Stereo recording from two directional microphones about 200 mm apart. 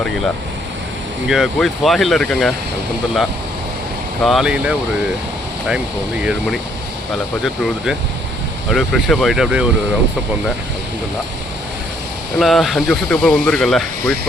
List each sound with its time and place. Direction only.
1.3 s speech: centre (ahead or behind)
4.2 s speech: centre (ahead or behind)
8.7 s speech: centre (ahead or behind)
12.4 s speech: centre (ahead or behind)